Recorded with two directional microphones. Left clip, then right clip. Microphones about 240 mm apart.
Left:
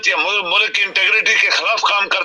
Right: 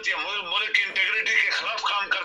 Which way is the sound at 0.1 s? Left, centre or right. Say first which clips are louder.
Left 10 dB; left.